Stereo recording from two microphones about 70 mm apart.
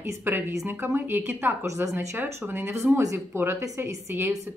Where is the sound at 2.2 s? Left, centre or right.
Right.